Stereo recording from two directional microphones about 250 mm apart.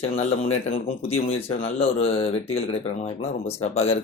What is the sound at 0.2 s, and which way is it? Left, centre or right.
Speech, left.